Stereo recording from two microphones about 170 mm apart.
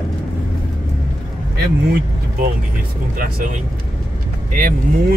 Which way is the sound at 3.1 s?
50° right (ahead or behind).